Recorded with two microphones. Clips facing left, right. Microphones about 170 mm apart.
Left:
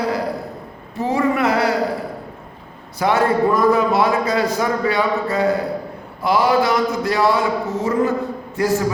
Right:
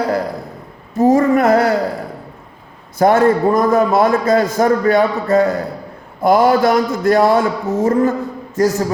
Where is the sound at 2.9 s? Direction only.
45° right (ahead or behind).